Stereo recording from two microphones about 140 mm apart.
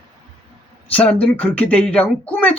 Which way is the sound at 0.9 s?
10° left (ahead or behind).